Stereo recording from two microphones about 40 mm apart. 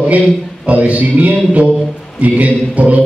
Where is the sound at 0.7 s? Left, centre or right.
Right.